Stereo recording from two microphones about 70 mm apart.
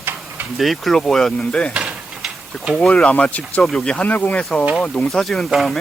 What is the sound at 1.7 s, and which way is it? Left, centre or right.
Mechanisms, centre.